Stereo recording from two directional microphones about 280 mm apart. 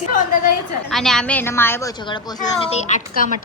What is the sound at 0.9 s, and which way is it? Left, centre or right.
A woman's voice, centre.